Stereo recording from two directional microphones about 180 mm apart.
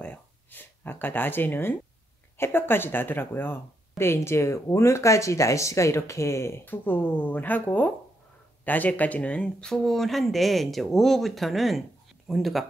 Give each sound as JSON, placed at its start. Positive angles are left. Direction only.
{"t": 0.0, "sound": "speech", "side_deg": 10}